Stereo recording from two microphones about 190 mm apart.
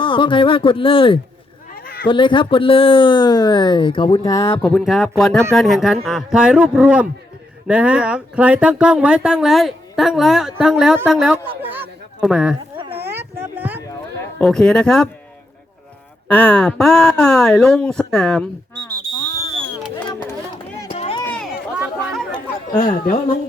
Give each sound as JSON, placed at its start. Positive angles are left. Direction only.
{"t": 0.0, "sound": "speech", "side_deg": 25}
{"t": 1.7, "sound": "a sound", "side_deg": 50}
{"t": 2.0, "sound": "speech", "side_deg": 25}
{"t": 4.7, "sound": "speech", "side_deg": 0}
{"t": 12.7, "sound": "dog", "side_deg": -25}
{"t": 13.1, "sound": "a sound", "side_deg": -10}
{"t": 14.3, "sound": "speech", "side_deg": 5}
{"t": 16.3, "sound": "speech", "side_deg": 5}
{"t": 20.9, "sound": "run", "side_deg": 30}
{"t": 21.8, "sound": "chatter", "side_deg": 0}
{"t": 22.7, "sound": "a man's voice", "side_deg": 50}